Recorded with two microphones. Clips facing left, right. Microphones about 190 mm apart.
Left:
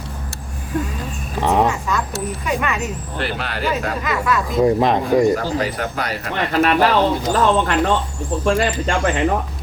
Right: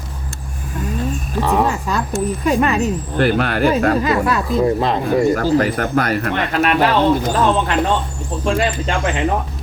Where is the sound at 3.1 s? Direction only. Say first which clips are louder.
Right 11 dB; 50° right (ahead or behind).